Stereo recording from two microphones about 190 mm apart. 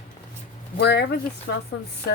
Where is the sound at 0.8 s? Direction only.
60° left (ahead or behind).